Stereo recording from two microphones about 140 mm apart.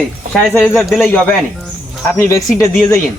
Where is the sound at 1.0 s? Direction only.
10° left (ahead or behind).